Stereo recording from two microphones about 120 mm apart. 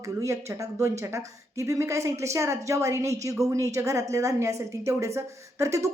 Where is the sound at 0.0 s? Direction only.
25° right (ahead or behind).